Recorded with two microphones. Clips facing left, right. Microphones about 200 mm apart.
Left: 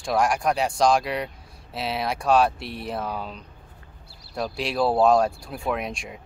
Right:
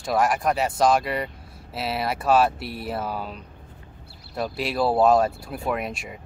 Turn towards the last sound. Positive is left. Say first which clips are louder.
# even
turn(degrees=-5)  # may be behind; listen again after turning